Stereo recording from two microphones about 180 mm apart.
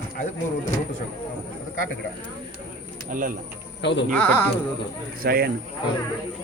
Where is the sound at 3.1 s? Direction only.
50° right (ahead or behind).